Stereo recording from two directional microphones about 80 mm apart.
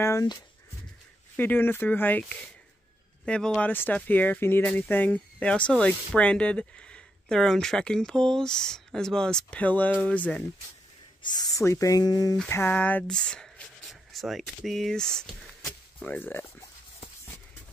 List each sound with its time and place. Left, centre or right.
0.0 s speech: left
1.3 s speech: left
3.3 s speech: centre
3.7 s speech: left
11.2 s speech: left
11.6 s speech: left
12.4 s a sound: left
12.7 s speech: centre
13.8 s speech: centre
16.2 s speech: left